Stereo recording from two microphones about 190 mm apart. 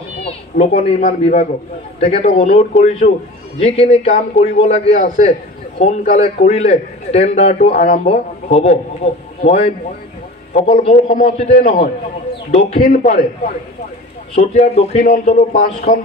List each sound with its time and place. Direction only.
0.6 s a man's voice: 35° left (ahead or behind)
10.5 s a man's voice: 35° left (ahead or behind)
14.3 s a man's voice: 35° left (ahead or behind)